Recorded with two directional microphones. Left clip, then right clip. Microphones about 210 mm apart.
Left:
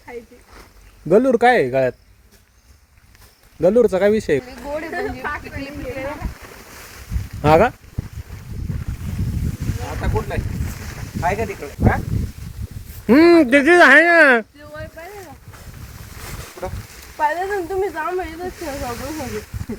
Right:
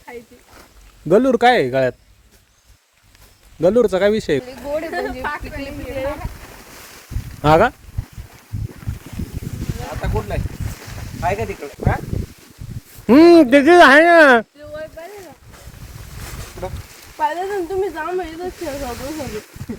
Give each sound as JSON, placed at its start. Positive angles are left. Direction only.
{"t": 1.0, "sound": "speech", "side_deg": -5}
{"t": 3.6, "sound": "speech", "side_deg": 0}
{"t": 4.9, "sound": "a sound", "side_deg": -20}
{"t": 7.4, "sound": "speech", "side_deg": 0}
{"t": 10.8, "sound": "boat", "side_deg": -15}
{"t": 13.1, "sound": "speech", "side_deg": -10}
{"t": 17.2, "sound": "speech", "side_deg": 10}